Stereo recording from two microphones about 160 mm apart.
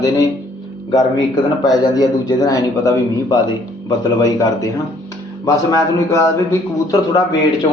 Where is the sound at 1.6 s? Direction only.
25° left (ahead or behind).